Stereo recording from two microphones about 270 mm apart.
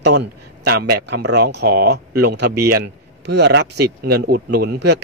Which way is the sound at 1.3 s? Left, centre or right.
Right.